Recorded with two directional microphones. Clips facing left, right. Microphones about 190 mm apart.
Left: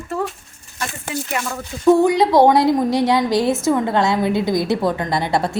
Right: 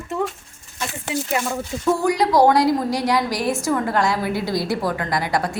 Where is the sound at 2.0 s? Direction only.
25° left (ahead or behind).